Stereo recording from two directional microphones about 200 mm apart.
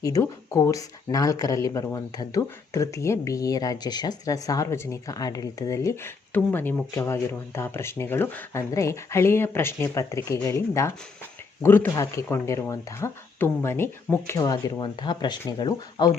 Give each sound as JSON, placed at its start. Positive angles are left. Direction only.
{"t": 0.0, "sound": "speech", "side_deg": 15}